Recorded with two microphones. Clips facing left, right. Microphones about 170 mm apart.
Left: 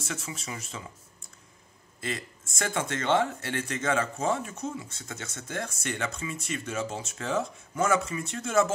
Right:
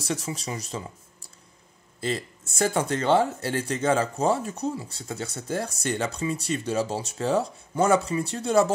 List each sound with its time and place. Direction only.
0.0 s speech: 35° right (ahead or behind)
2.0 s speech: 30° right (ahead or behind)